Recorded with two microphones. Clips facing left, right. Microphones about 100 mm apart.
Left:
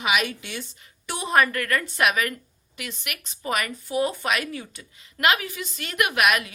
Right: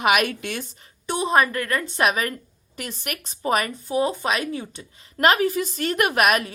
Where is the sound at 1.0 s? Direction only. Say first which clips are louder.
Right 2 dB; 25° right (ahead or behind).